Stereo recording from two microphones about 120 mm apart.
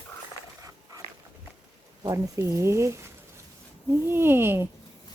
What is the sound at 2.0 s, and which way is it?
Speech, 30° right (ahead or behind).